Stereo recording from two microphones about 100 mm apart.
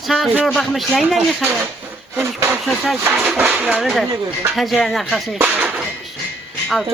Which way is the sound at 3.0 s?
20° right (ahead or behind).